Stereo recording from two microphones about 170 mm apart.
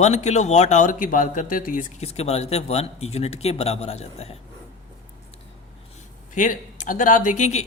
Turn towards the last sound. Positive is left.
turn(degrees=45)  # may be behind; listen again after turning